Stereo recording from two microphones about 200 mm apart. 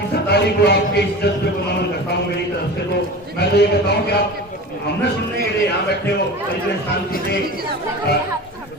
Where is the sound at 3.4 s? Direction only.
55° left (ahead or behind).